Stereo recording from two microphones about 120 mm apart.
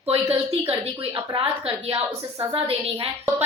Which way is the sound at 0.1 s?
55° right (ahead or behind).